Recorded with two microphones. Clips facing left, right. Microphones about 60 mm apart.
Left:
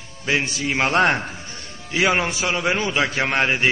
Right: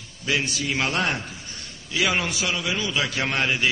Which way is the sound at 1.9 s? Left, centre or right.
Left.